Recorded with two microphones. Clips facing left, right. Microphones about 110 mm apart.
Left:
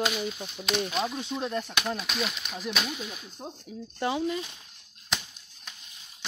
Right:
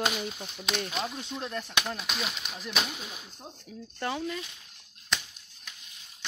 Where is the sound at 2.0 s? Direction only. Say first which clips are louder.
Left 3 dB; 15° right (ahead or behind).